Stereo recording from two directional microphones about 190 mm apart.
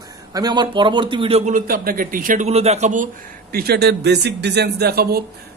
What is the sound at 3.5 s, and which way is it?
Speech, 55° right (ahead or behind).